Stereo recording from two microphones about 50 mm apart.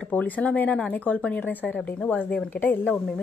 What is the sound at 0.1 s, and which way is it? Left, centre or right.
A woman's voice, left.